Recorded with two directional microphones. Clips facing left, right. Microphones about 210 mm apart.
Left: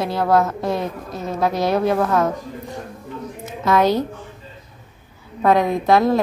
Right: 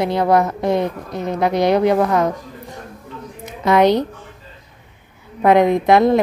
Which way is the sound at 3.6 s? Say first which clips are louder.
Right 3 dB; 20° right (ahead or behind).